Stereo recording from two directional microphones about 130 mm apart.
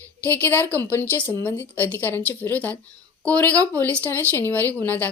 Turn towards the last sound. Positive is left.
turn(degrees=15)  # may be behind; listen again after turning